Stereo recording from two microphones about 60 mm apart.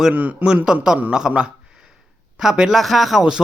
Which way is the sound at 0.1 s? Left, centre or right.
Right.